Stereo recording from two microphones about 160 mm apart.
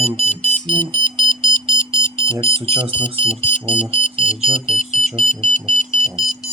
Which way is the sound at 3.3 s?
50° left (ahead or behind).